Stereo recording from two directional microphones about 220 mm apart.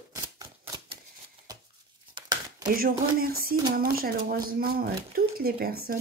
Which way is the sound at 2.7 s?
40° right (ahead or behind).